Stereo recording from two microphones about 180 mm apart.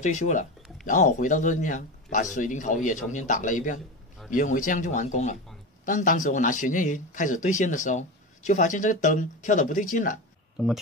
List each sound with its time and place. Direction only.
0.0 s a man's voice: 45° left (ahead or behind)